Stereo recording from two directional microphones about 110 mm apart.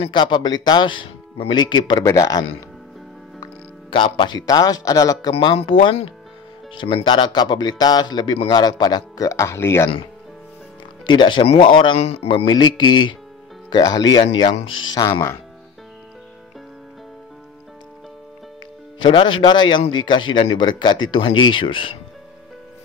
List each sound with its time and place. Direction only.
0.0 s speech: 45° left (ahead or behind)
2.0 s speech: 30° left (ahead or behind)
3.9 s speech: 50° left (ahead or behind)
5.3 s speech: 60° left (ahead or behind); by 9.8 s 25° left (ahead or behind)
11.1 s speech: 45° left (ahead or behind)
19.0 s speech: 50° left (ahead or behind)